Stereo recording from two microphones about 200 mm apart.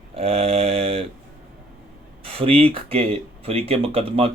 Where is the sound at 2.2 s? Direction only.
30° right (ahead or behind).